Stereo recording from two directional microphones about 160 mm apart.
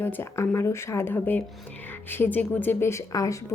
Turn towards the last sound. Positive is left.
turn(degrees=20)  # may be behind; listen again after turning